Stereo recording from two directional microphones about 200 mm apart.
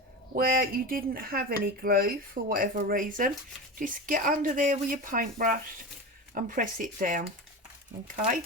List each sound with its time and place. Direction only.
0.3 s speech: 45° right (ahead or behind)